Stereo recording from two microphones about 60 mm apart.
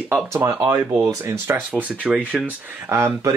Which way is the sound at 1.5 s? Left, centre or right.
Right.